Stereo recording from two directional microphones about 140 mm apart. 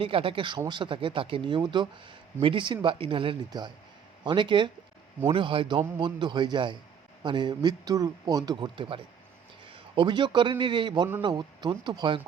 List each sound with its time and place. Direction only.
0.0 s a man's voice: 40° right (ahead or behind)